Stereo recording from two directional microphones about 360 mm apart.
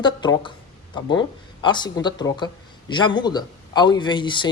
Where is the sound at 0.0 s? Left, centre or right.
Centre.